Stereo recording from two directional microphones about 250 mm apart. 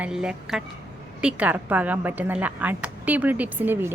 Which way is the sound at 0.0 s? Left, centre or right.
Centre.